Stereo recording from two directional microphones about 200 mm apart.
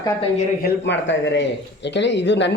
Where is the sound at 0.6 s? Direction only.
65° left (ahead or behind).